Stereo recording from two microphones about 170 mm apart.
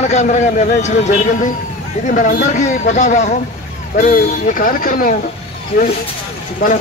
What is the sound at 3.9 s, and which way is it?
Speech, 55° left (ahead or behind).